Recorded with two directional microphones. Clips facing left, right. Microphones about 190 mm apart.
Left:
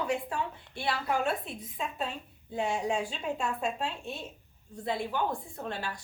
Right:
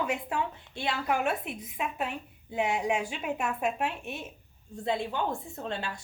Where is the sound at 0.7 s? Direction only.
20° right (ahead or behind).